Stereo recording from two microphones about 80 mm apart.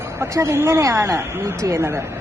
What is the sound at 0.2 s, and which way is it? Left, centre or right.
Speech, right.